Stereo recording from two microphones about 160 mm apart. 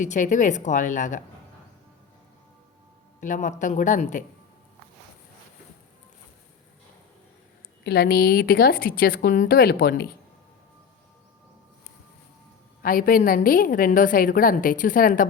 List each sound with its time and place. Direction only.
0.0 s a woman's voice: 50° left (ahead or behind)
3.2 s a woman's voice: 50° left (ahead or behind)
7.9 s a woman's voice: 85° left
12.8 s a woman's voice: 60° left (ahead or behind)